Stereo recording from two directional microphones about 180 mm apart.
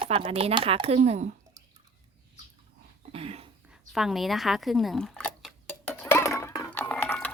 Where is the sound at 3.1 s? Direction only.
35° right (ahead or behind).